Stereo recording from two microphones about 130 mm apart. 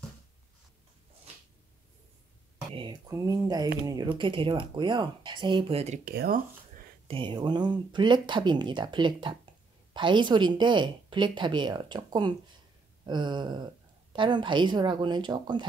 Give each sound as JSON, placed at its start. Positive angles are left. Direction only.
{"t": 2.7, "sound": "speech", "side_deg": -40}
{"t": 3.1, "sound": "speech", "side_deg": -25}
{"t": 7.1, "sound": "speech", "side_deg": -40}